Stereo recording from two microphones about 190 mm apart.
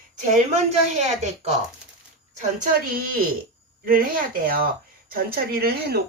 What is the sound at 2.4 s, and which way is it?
Speech, 45° right (ahead or behind).